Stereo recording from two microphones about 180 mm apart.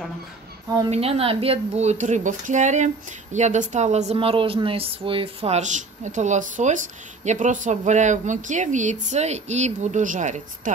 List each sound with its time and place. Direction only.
0.8 s a woman's voice: 35° right (ahead or behind)